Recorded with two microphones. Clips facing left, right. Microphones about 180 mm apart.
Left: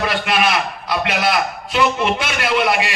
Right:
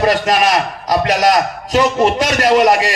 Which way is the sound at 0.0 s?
40° right (ahead or behind).